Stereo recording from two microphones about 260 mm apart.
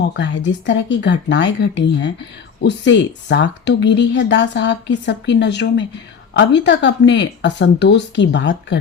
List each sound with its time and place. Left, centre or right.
0.0 s speech: left